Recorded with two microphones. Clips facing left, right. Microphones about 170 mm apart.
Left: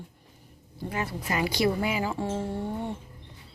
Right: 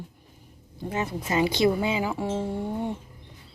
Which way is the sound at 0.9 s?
20° right (ahead or behind).